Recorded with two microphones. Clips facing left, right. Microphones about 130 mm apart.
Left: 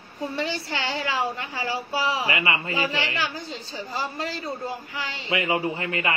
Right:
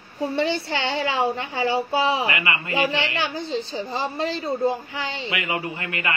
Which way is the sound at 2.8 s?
25° right (ahead or behind).